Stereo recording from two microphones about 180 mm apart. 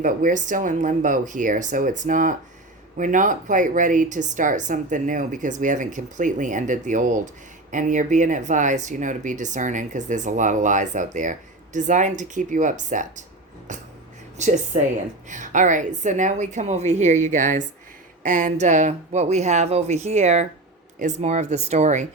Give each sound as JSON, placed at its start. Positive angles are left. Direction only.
{"t": 0.0, "sound": "speech", "side_deg": -45}
{"t": 14.3, "sound": "speech", "side_deg": -40}